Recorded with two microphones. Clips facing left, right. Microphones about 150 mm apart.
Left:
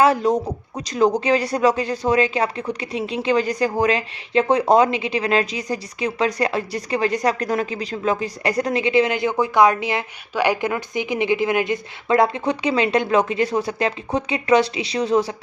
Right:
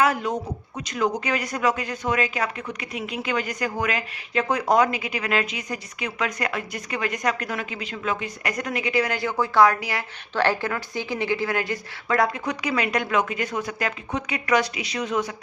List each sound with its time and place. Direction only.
0.0 s speech: 35° left (ahead or behind)